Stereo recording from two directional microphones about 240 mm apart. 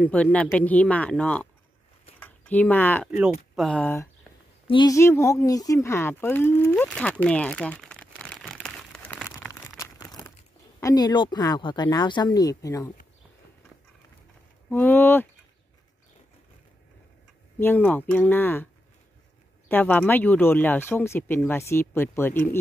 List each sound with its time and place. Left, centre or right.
0.0 s speech: centre
2.1 s a sound: centre
3.5 s speech: centre
9.5 s crumpling: centre
10.8 s speech: centre
14.7 s speech: centre
17.6 s speech: centre
19.7 s speech: centre